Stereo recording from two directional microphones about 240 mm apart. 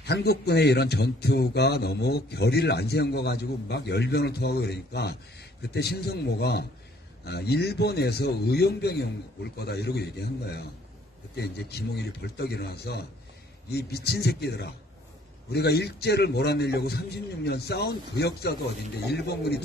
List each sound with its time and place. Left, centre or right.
0.0 s a man's voice: left